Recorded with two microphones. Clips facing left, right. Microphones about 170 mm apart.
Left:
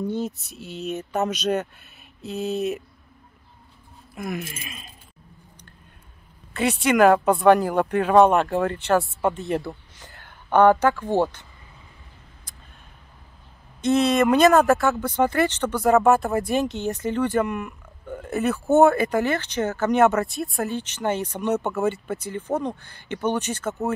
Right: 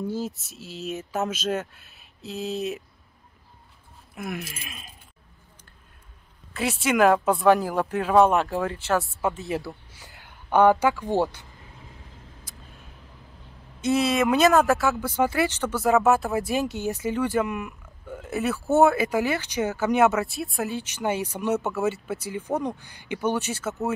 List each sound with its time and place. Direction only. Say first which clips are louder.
0.0 s speech: left 3 dB; centre (ahead or behind)
4.1 s speech: left 3 dB; centre (ahead or behind)
6.5 s speech: left 3 dB; centre (ahead or behind)
13.7 s speech: left 3 dB; 5° right (ahead or behind)